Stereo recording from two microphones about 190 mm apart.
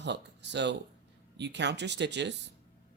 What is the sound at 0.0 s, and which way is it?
Speech, 65° right (ahead or behind).